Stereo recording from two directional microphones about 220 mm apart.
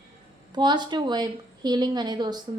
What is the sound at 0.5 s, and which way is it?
A woman's voice, 20° right (ahead or behind).